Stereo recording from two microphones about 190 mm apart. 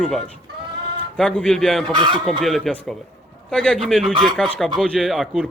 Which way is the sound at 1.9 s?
25° right (ahead or behind).